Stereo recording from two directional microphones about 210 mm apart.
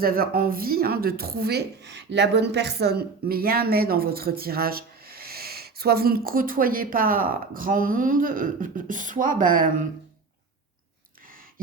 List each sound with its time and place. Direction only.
0.0 s speech: 45° right (ahead or behind)